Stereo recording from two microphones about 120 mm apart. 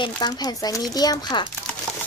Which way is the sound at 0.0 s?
35° left (ahead or behind).